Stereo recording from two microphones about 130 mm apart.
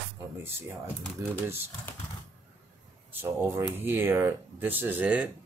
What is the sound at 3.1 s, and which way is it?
Speech, 20° right (ahead or behind).